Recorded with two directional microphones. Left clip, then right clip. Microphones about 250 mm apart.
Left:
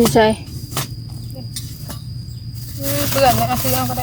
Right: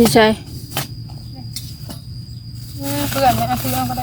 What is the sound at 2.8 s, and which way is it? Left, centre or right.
Speech, centre.